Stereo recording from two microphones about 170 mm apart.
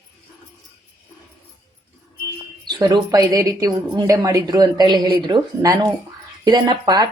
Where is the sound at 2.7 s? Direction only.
25° right (ahead or behind).